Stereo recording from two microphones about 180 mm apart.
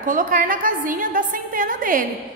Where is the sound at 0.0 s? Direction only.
50° right (ahead or behind).